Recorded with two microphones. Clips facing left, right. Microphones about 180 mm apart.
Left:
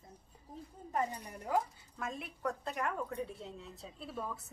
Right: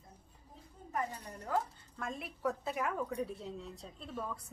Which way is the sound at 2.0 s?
Centre (ahead or behind).